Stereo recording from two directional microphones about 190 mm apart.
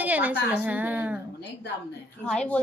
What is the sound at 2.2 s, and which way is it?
Speech, 5° left (ahead or behind).